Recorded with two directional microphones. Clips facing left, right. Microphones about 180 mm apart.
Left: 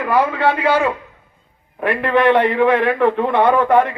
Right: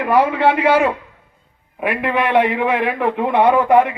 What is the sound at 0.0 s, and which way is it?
A man's voice, 20° right (ahead or behind).